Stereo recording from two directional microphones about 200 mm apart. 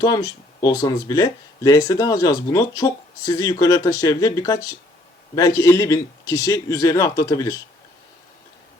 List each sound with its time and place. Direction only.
0.0 s speech: 20° left (ahead or behind)